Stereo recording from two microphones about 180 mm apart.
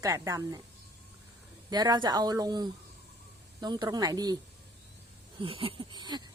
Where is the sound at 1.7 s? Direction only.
25° right (ahead or behind).